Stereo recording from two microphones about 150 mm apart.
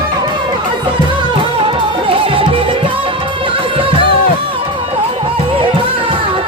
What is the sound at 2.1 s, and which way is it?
Music, 35° right (ahead or behind).